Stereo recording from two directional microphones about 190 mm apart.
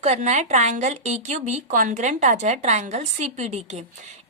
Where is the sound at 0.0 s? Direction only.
35° right (ahead or behind).